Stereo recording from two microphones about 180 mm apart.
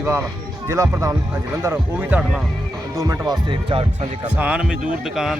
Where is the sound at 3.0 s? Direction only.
20° right (ahead or behind).